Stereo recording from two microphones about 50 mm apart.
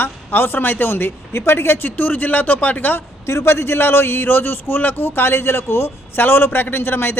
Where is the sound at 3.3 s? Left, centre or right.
Left.